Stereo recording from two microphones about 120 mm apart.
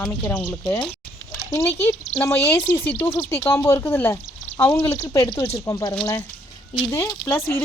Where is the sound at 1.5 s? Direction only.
20° left (ahead or behind).